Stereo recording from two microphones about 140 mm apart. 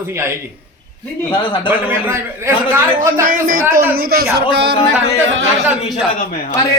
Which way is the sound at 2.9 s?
75° right (ahead or behind).